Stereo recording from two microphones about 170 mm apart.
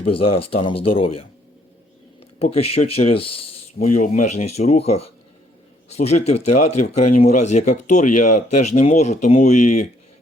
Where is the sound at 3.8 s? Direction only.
50° left (ahead or behind).